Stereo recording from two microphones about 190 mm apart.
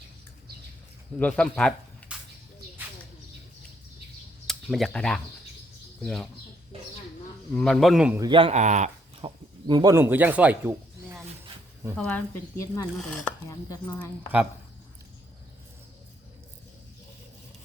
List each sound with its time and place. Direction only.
1.2 s speech: 5° left (ahead or behind)
4.4 s speech: centre (ahead or behind)
7.5 s speech: 5° left (ahead or behind)
8.2 s speech: 25° right (ahead or behind)
9.2 s speech: 20° right (ahead or behind)
11.9 s speech: 5° left (ahead or behind)
13.0 s speech: 5° left (ahead or behind)
13.5 s speech: 15° left (ahead or behind)